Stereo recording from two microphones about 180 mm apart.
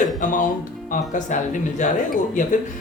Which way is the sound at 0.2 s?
45° left (ahead or behind).